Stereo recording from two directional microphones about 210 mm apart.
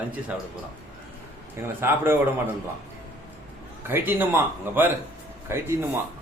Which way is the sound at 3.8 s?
10° right (ahead or behind).